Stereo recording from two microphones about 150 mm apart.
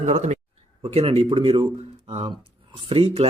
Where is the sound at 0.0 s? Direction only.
50° right (ahead or behind).